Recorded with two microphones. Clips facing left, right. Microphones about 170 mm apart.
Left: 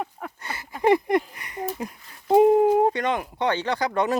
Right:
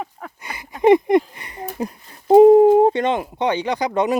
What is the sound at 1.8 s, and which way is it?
Speech, 35° right (ahead or behind).